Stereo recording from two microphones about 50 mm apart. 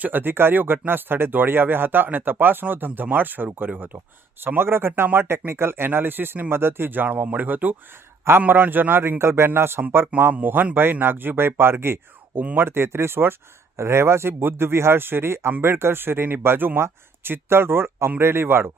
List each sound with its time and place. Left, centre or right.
0.0 s speech: right
10.3 s speech: right
12.4 s speech: right
12.6 s speech: right